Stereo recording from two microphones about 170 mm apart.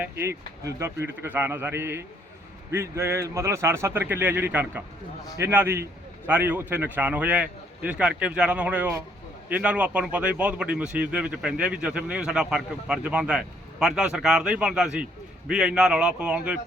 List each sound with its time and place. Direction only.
0.0 s a man's voice: 15° right (ahead or behind)